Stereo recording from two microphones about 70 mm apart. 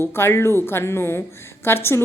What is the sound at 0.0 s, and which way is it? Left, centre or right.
Speech, left.